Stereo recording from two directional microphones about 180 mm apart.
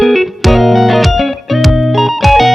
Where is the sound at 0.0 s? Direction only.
Centre (ahead or behind).